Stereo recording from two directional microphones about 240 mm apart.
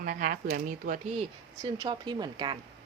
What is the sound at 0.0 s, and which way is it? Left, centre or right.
A woman's voice, right.